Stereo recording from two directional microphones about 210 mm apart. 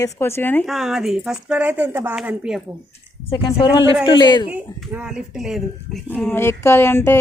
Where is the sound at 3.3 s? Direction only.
20° left (ahead or behind).